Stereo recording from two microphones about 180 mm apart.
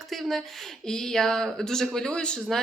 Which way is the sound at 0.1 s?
Centre (ahead or behind).